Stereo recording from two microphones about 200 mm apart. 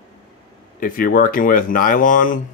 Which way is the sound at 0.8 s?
45° left (ahead or behind).